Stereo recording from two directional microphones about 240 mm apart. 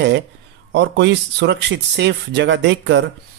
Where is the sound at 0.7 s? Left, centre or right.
Right.